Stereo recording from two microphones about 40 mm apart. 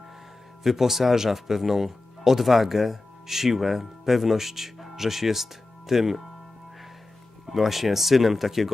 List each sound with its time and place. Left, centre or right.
0.6 s speech: centre
7.4 s speech: centre